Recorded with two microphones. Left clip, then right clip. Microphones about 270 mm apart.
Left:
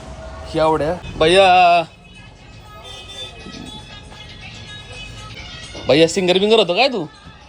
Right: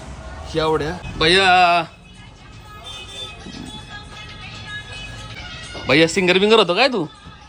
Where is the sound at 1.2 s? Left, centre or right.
Centre.